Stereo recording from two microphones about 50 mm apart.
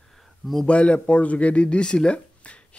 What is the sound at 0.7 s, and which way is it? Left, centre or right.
Speech, left.